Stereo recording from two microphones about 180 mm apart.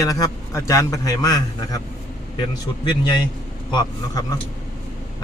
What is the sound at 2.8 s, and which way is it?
Speech, 25° left (ahead or behind).